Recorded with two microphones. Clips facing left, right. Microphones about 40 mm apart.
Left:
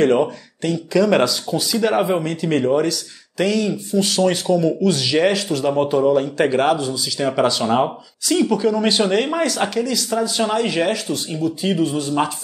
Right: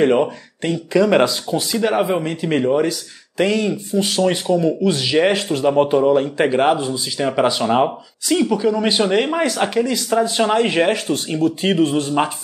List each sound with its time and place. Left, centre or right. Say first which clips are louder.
0.0 s speech: right 1 dB; centre
0.6 s speech: right 1 dB; right
1.8 s speech: even; centre
2.2 s speech: even; right
7.2 s speech: right 1 dB; centre; by 11.3 s right
11.3 s speech: right 3 dB; right